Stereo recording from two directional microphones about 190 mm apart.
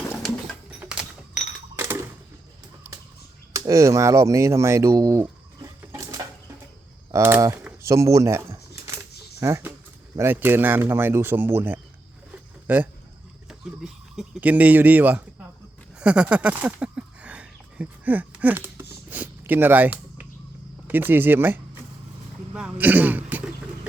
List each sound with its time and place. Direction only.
0.8 s typewriter: 5° right (ahead or behind)
3.5 s speech: 15° right (ahead or behind)
16.0 s a sound: 5° right (ahead or behind)
20.8 s speech: 10° right (ahead or behind)